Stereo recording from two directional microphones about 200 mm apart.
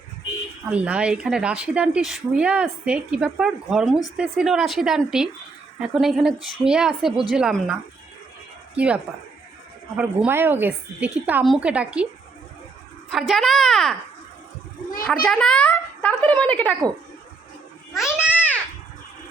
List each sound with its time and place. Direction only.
0.7 s a woman's voice: 5° right (ahead or behind)
13.1 s a woman's voice: centre (ahead or behind)
15.0 s a woman's voice: 5° left (ahead or behind)
17.9 s a sound: centre (ahead or behind)